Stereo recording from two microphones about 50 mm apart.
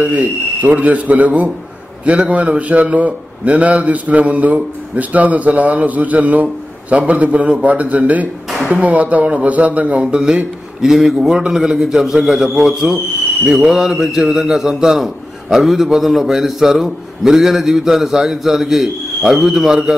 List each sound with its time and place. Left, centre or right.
0.0 s a man's voice: right
10.1 s a man's voice: centre